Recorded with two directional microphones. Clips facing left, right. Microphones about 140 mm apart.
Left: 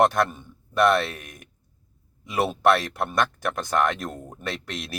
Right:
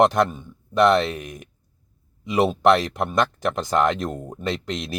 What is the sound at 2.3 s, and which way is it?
Speech, 20° right (ahead or behind).